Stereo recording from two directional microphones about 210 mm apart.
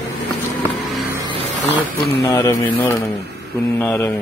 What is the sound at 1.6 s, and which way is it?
Speech, 5° right (ahead or behind).